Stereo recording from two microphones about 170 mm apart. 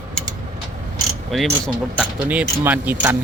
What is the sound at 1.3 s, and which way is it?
Speech, centre (ahead or behind).